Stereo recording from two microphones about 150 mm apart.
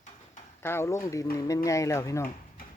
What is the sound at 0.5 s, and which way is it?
Speech, 15° left (ahead or behind).